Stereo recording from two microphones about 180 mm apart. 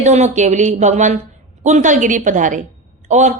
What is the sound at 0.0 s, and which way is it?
A woman's voice, 40° right (ahead or behind).